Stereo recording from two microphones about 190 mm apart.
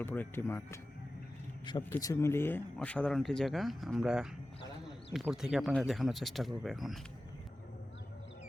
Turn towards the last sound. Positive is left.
turn(degrees=0)  # may be behind; listen again after turning